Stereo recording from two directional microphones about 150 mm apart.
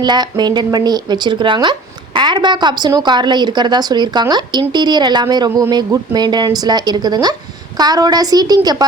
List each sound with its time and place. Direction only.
0.0 s a woman's voice: 30° right (ahead or behind)